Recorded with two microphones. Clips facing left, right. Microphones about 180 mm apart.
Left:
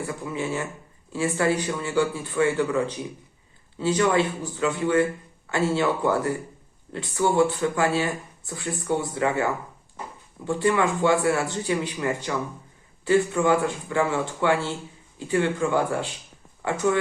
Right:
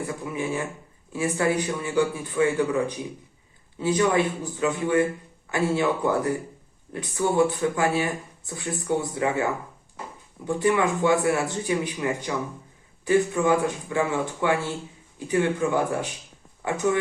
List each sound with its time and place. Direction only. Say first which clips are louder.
0.1 s a man's voice: even; 15° right (ahead or behind)
6.9 s a man's voice: left 1 dB; 20° right (ahead or behind)